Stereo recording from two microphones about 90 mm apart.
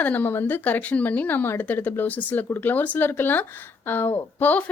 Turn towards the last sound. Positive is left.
turn(degrees=20)  # may be behind; listen again after turning